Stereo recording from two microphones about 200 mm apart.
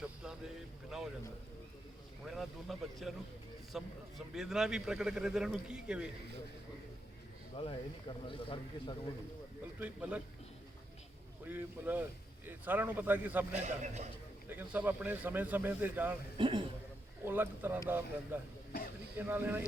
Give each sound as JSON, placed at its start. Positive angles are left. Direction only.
{"t": 0.0, "sound": "speech", "side_deg": -5}
{"t": 2.2, "sound": "a man's voice", "side_deg": 0}
{"t": 7.5, "sound": "a man's voice", "side_deg": 30}
{"t": 9.8, "sound": "speech", "side_deg": -5}
{"t": 11.4, "sound": "speech", "side_deg": -10}
{"t": 13.5, "sound": "a man's voice", "side_deg": -35}
{"t": 14.5, "sound": "speech", "side_deg": -10}
{"t": 16.4, "sound": "a man's voice", "side_deg": -25}
{"t": 17.2, "sound": "speech", "side_deg": -10}